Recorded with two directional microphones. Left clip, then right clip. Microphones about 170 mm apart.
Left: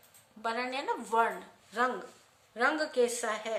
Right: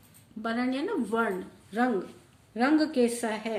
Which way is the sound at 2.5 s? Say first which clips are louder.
Right 3 dB; 15° left (ahead or behind).